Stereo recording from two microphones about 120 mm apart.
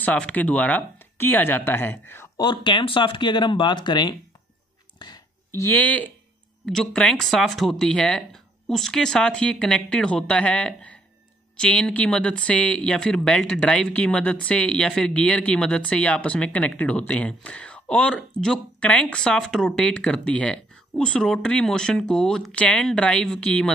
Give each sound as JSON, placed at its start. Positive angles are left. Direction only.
{"t": 0.0, "sound": "speech", "side_deg": 10}
{"t": 2.3, "sound": "speech", "side_deg": 40}
{"t": 4.9, "sound": "a sound", "side_deg": 35}
{"t": 5.5, "sound": "speech", "side_deg": 20}
{"t": 6.6, "sound": "speech", "side_deg": 5}